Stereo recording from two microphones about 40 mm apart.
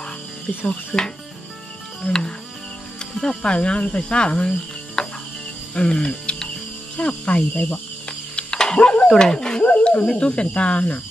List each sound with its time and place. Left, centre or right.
0.7 s speech: left
3.0 s music: centre
3.4 s speech: left
5.0 s cricket: centre
7.0 s speech: left
8.4 s dog: left
8.7 s speech: left
9.0 s speech: centre; by 11.0 s left